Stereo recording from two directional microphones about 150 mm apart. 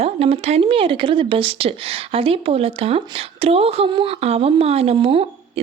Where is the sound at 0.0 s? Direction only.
40° right (ahead or behind).